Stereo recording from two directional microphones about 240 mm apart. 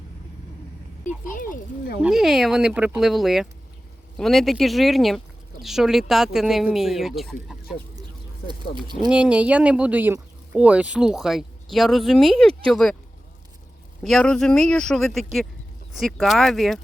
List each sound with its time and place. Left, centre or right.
1.0 s speech: left
2.0 s speech: centre
9.0 s speech: centre
14.0 s speech: centre